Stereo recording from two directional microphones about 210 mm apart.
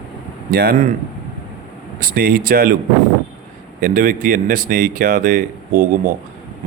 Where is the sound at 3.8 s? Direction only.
40° right (ahead or behind).